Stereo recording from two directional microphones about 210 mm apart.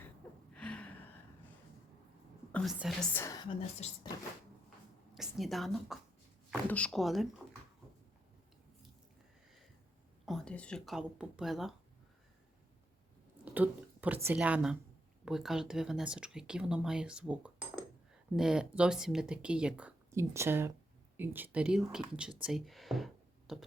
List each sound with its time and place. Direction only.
0.5 s a sound: 5° left (ahead or behind)
2.5 s whispering: 5° left (ahead or behind)
2.7 s speech: centre (ahead or behind)
3.1 s a woman's voice: 10° left (ahead or behind)
3.8 s speech: 30° left (ahead or behind)
5.1 s speech: centre (ahead or behind)
10.2 s speech: 5° left (ahead or behind)
13.4 s speech: 10° right (ahead or behind)